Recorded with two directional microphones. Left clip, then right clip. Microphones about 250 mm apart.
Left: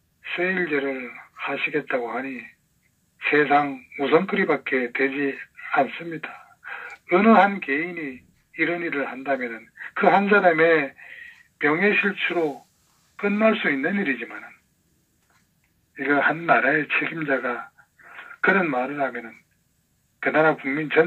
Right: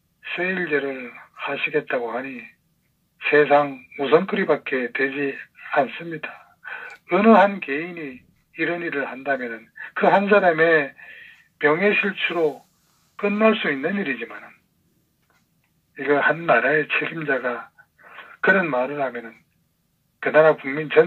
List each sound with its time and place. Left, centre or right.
0.2 s speech: right
15.9 s speech: right